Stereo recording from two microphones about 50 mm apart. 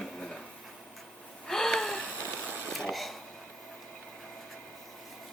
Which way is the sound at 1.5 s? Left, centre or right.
Centre.